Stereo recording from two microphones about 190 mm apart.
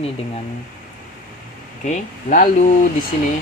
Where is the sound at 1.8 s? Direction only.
40° left (ahead or behind).